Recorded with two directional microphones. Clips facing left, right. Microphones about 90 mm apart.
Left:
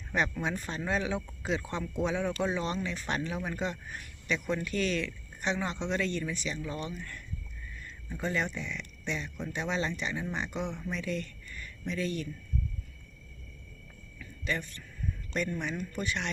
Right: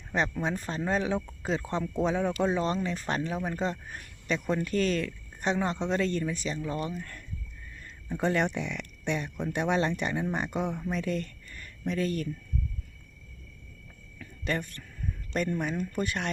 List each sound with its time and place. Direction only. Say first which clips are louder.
0.1 s speech: right 2 dB; 30° right (ahead or behind)
8.2 s speech: right 5 dB; 65° right (ahead or behind); by 12.3 s 45° right (ahead or behind)
14.2 s a sound: right 3 dB; 50° right (ahead or behind)
15.3 s speech: right 4 dB; 45° right (ahead or behind)